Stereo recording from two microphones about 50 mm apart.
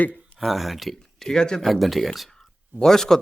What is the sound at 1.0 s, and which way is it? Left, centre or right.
Speech, centre.